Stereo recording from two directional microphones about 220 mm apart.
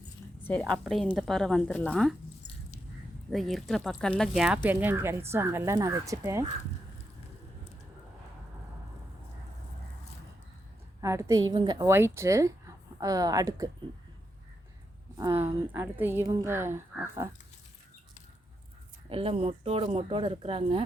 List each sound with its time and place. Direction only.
0.4 s speech: 5° left (ahead or behind)
3.2 s speech: centre (ahead or behind)
11.0 s speech: 15° right (ahead or behind)
15.2 s speech: 10° right (ahead or behind)
19.0 s speech: 25° right (ahead or behind)